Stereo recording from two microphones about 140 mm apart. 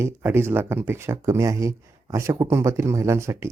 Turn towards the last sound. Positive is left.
turn(degrees=-20)  # may be behind; listen again after turning